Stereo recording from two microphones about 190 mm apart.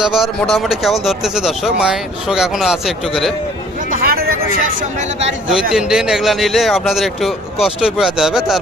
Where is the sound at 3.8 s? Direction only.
45° right (ahead or behind).